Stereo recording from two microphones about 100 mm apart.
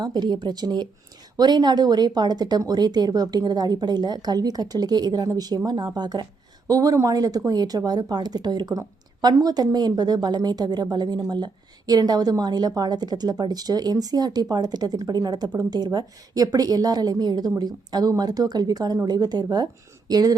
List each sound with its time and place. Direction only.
0.0 s a woman's voice: 45° right (ahead or behind)